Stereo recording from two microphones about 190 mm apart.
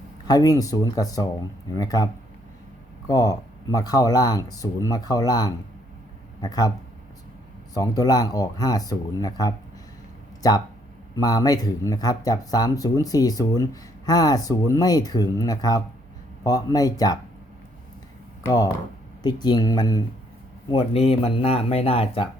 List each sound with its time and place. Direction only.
0.3 s speech: 20° left (ahead or behind)
3.1 s speech: 20° left (ahead or behind)
7.7 s speech: 20° left (ahead or behind)
11.1 s speech: 20° left (ahead or behind)
18.4 s speech: 20° left (ahead or behind)